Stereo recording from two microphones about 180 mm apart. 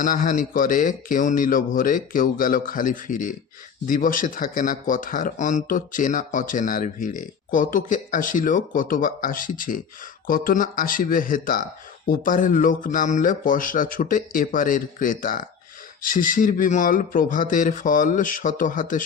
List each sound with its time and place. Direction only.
0.0 s speech: 50° left (ahead or behind)